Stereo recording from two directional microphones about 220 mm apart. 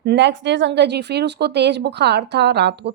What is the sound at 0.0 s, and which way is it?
A woman's voice, 50° right (ahead or behind).